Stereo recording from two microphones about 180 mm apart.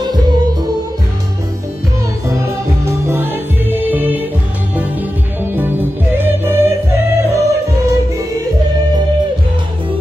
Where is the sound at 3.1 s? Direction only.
10° right (ahead or behind).